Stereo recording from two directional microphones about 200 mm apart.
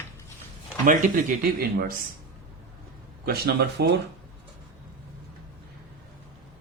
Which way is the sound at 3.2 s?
55° right (ahead or behind).